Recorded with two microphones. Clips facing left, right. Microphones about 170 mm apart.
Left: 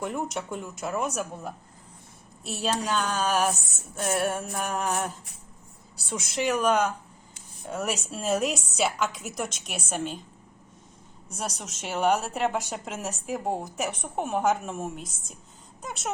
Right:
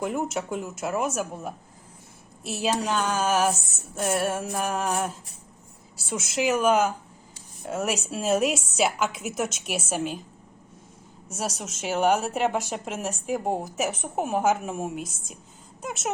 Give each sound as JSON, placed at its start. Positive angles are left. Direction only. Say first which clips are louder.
{"t": 0.0, "sound": "a woman's voice", "louder": "right 3 dB", "side_deg": -5}
{"t": 11.3, "sound": "a woman's voice", "louder": "right 3 dB", "side_deg": -5}